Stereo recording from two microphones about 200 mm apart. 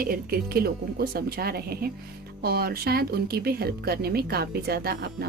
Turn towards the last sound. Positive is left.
turn(degrees=-50)  # may be behind; listen again after turning